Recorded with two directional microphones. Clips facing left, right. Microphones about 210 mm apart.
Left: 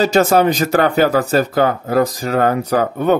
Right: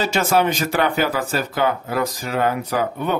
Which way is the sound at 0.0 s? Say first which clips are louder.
Left 6 dB; 40° left (ahead or behind).